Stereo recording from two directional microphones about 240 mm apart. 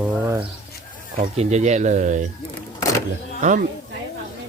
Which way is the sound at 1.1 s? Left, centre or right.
Right.